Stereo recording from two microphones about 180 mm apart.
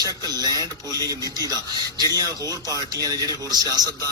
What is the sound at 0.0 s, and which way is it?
A man's voice, 20° right (ahead or behind).